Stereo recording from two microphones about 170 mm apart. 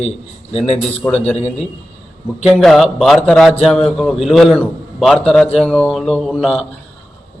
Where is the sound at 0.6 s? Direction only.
5° left (ahead or behind).